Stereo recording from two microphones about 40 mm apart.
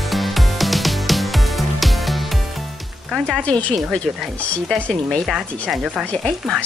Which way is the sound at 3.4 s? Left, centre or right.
Left.